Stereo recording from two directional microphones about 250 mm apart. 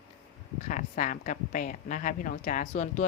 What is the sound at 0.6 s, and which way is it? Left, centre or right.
A woman's voice, left.